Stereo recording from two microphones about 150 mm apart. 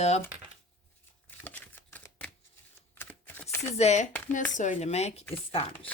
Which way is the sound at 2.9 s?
15° left (ahead or behind).